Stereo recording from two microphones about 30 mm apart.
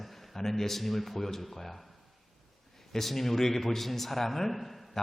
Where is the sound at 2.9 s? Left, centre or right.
Centre.